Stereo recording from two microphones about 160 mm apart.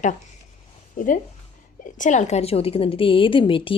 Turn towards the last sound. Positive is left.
turn(degrees=35)  # may be behind; listen again after turning